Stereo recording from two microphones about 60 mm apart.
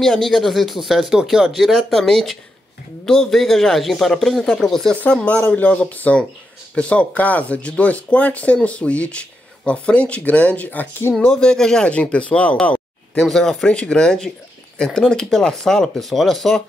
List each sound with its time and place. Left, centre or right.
0.0 s speech: centre
5.1 s speech: centre
11.3 s speech: centre
13.2 s speech: centre